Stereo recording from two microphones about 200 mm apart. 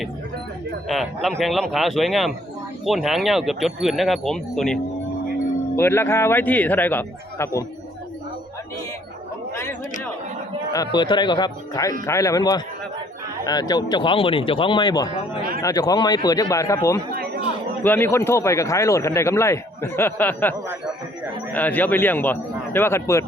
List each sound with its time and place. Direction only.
0.9 s speech: centre (ahead or behind)
10.7 s speech: 20° left (ahead or behind)
17.1 s chatter: 50° right (ahead or behind)
17.8 s speech: 10° left (ahead or behind)